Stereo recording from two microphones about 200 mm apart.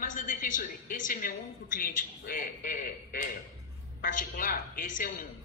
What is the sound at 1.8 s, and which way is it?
A man's voice, 45° left (ahead or behind).